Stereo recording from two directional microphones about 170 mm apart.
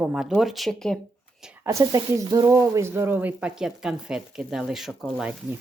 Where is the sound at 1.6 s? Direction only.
15° right (ahead or behind).